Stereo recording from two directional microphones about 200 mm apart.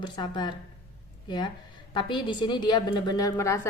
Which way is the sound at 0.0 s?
20° left (ahead or behind).